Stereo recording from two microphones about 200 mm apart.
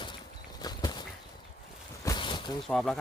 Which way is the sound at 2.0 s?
25° left (ahead or behind).